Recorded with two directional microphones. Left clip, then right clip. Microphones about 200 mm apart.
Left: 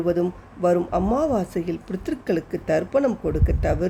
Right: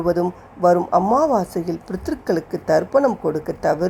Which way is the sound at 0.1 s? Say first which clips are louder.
Right 3 dB; 20° left (ahead or behind).